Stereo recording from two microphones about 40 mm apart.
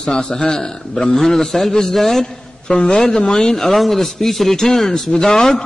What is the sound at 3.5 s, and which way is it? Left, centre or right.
A man's voice, centre.